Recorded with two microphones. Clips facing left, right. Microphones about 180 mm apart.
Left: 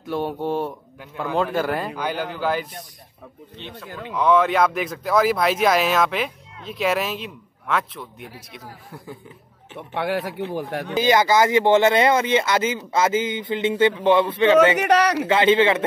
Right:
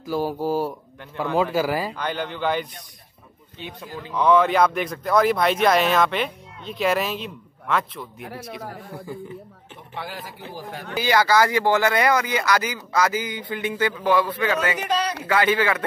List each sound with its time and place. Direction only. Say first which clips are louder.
0.0 s speech: right 1 dB; centre (ahead or behind)
2.0 s speech: left 1 dB; 5° left (ahead or behind)
4.1 s speech: even; centre (ahead or behind)
9.8 s speech: left 10 dB; 65° left (ahead or behind)
10.9 s speech: left 2 dB; 20° left (ahead or behind)
14.8 s speech: left 7 dB; 75° left (ahead or behind)
15.2 s speech: left 1 dB; 25° left (ahead or behind)